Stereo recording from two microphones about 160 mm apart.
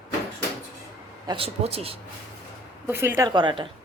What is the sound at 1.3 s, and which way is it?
Speech, 35° right (ahead or behind).